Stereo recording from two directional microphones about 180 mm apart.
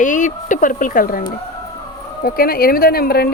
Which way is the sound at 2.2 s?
55° left (ahead or behind).